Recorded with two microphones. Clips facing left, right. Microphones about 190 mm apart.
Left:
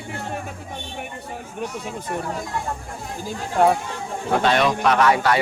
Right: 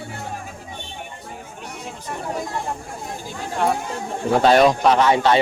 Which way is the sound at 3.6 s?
45° left (ahead or behind).